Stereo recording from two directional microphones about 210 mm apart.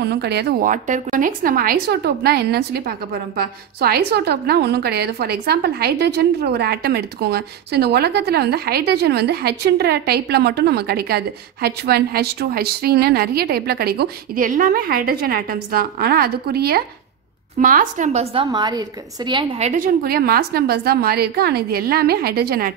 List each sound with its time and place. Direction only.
0.0 s a woman's voice: 50° right (ahead or behind); by 19.7 s 25° right (ahead or behind)
19.8 s a woman's voice: 45° right (ahead or behind)